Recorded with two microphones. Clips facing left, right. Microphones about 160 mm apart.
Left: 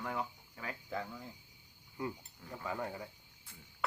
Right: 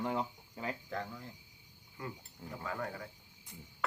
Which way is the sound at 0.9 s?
5° left (ahead or behind).